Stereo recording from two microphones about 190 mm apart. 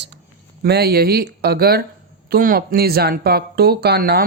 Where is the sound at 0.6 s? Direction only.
55° right (ahead or behind).